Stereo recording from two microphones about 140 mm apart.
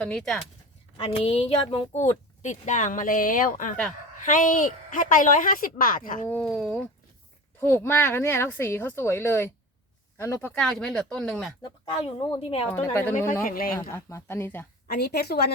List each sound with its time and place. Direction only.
0.0 s speech: 5° left (ahead or behind)
0.9 s a woman's voice: 45° left (ahead or behind); by 6.2 s 80° left
6.2 s speech: 5° left (ahead or behind)
7.6 s speech: 15° left (ahead or behind)
10.5 s speech: 5° left (ahead or behind)
11.6 s speech: 40° left (ahead or behind)
12.7 s speech: 15° left (ahead or behind)
13.4 s speech: 90° left
13.7 s speech: 20° left (ahead or behind)